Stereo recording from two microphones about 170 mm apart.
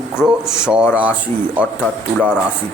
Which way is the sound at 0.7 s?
5° right (ahead or behind).